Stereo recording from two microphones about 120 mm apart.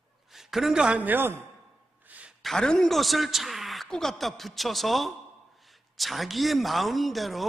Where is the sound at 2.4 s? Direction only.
5° left (ahead or behind).